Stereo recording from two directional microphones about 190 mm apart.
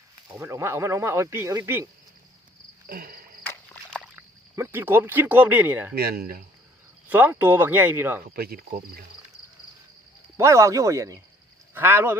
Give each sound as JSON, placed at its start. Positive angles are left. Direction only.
{"t": 0.3, "sound": "speech", "side_deg": -10}
{"t": 2.8, "sound": "cricket", "side_deg": -50}
{"t": 3.4, "sound": "a sound", "side_deg": 10}
{"t": 4.0, "sound": "speech", "side_deg": -10}
{"t": 5.9, "sound": "cricket", "side_deg": -55}
{"t": 7.1, "sound": "speech", "side_deg": -10}
{"t": 8.2, "sound": "cricket", "side_deg": -55}
{"t": 10.3, "sound": "speech", "side_deg": -15}